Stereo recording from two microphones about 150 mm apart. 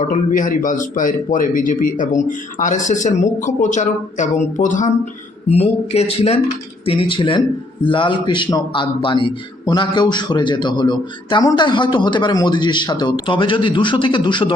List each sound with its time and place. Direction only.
0.0 s speech: 55° left (ahead or behind)
5.5 s a man's voice: 45° left (ahead or behind)